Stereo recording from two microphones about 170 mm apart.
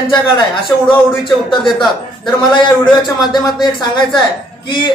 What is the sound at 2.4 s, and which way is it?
Speech, 25° left (ahead or behind).